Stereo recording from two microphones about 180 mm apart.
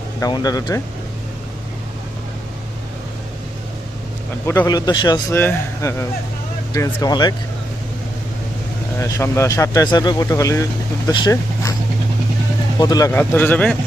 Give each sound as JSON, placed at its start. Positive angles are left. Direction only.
{"t": 0.2, "sound": "a man's voice", "side_deg": 20}
{"t": 4.4, "sound": "a man's voice", "side_deg": 20}
{"t": 9.0, "sound": "speech", "side_deg": 15}
{"t": 12.8, "sound": "speech", "side_deg": 20}